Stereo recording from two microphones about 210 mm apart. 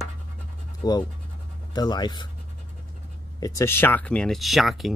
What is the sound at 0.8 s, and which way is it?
Speech, 20° left (ahead or behind).